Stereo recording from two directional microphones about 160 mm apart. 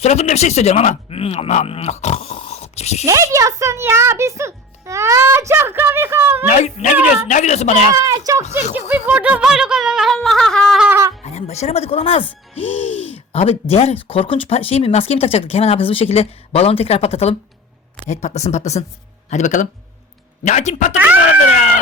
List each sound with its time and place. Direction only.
0.0 s speech: 45° left (ahead or behind)
3.1 s a child's voice: 20° right (ahead or behind)
6.5 s speech: 50° left (ahead or behind)
6.9 s a child's voice: 10° right (ahead or behind)
7.3 s speech: 50° left (ahead or behind)
7.9 s speech: 20° right (ahead or behind)
8.9 s a sound: 10° right (ahead or behind)
10.8 s a sound: 15° right (ahead or behind)
11.3 s speech: 45° left (ahead or behind)
13.3 s speech: 40° left (ahead or behind)